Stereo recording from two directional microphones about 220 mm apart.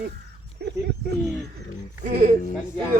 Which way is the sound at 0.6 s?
50° right (ahead or behind).